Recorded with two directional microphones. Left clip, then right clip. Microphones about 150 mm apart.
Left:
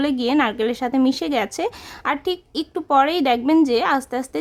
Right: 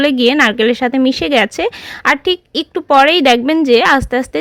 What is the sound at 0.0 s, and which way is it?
Speech, 25° right (ahead or behind).